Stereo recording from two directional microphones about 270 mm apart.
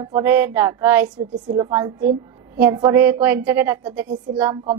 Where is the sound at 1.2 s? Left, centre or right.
Right.